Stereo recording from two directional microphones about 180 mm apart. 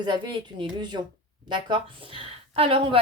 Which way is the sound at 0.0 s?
25° right (ahead or behind).